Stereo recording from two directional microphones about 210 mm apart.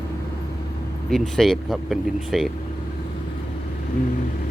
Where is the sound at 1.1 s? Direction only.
Centre (ahead or behind).